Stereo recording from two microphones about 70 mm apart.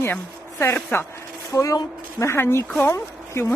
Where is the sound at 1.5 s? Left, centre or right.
Left.